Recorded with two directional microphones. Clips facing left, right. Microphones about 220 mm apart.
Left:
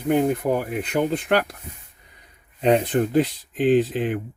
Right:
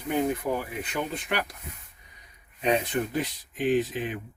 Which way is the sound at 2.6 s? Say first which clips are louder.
Left 7 dB; 60° left (ahead or behind).